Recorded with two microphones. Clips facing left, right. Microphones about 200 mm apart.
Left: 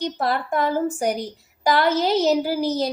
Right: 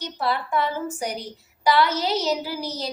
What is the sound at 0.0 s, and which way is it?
A woman's voice, 50° left (ahead or behind).